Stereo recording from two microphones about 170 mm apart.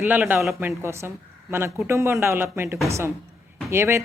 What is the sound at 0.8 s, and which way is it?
A woman's voice, 15° right (ahead or behind).